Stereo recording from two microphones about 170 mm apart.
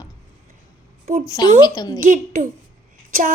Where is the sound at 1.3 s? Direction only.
20° left (ahead or behind).